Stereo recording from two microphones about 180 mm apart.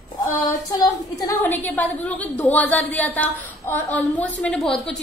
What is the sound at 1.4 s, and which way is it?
A woman's voice, 10° left (ahead or behind).